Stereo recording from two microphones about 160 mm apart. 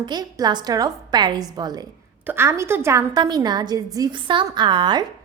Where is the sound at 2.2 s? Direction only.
15° right (ahead or behind).